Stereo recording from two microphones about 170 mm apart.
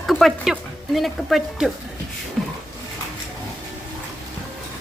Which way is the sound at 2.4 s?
Centre (ahead or behind).